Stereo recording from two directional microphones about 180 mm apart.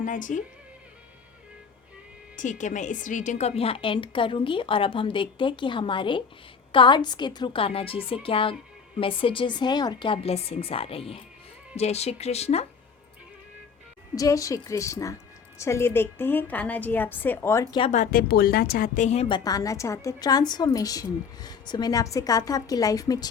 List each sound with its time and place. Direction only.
0.0 s a woman's voice: 45° left (ahead or behind)
2.3 s a woman's voice: 45° left (ahead or behind)
14.2 s a woman's voice: 20° left (ahead or behind)
17.7 s a woman's voice: 35° left (ahead or behind)
19.5 s a woman's voice: 20° left (ahead or behind)